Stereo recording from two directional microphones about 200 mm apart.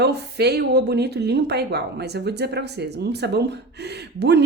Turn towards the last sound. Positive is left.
turn(degrees=-55)  # may be behind; listen again after turning